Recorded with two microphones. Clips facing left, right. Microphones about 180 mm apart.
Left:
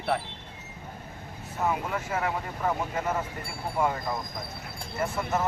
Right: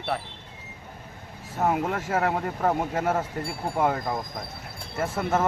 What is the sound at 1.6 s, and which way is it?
Speech, 55° right (ahead or behind).